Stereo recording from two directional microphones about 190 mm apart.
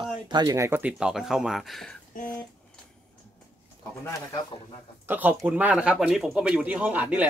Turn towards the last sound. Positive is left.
turn(degrees=-10)  # may be behind; listen again after turning